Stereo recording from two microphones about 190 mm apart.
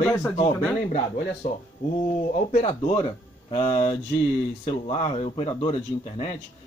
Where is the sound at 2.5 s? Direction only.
35° left (ahead or behind).